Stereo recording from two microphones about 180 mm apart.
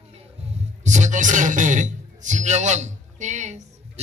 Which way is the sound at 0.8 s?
40° right (ahead or behind).